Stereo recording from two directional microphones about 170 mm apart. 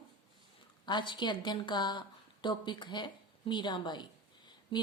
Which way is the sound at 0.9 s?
25° left (ahead or behind).